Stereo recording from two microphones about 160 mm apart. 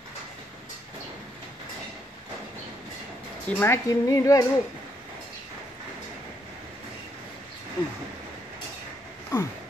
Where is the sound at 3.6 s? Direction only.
20° left (ahead or behind).